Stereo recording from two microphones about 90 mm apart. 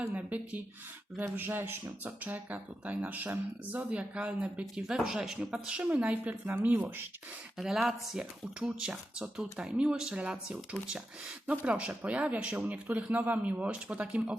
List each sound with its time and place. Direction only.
0.1 s speech: 15° right (ahead or behind)
7.6 s speech: 5° right (ahead or behind)